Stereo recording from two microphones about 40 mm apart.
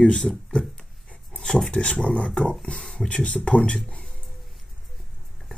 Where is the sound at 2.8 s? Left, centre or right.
Centre.